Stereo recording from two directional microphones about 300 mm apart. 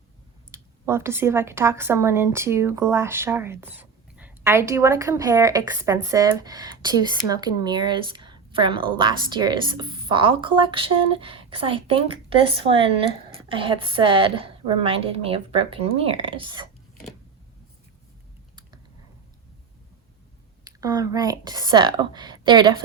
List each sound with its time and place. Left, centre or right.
0.5 s a woman's voice: centre
20.7 s a woman's voice: centre